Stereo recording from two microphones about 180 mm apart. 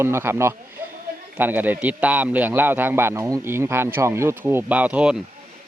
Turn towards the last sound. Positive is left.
turn(degrees=-5)  # may be behind; listen again after turning